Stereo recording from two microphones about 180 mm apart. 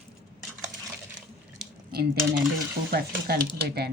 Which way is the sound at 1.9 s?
60° right (ahead or behind).